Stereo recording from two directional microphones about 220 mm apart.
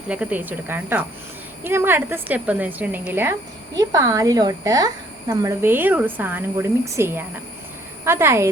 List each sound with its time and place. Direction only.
0.1 s speech: 5° right (ahead or behind)